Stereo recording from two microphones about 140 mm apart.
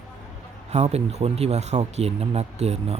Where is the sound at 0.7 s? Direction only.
50° right (ahead or behind).